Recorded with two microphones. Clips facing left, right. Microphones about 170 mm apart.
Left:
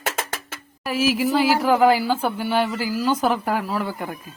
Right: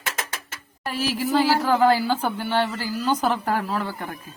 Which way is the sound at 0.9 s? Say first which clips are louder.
Left 4 dB; 10° left (ahead or behind).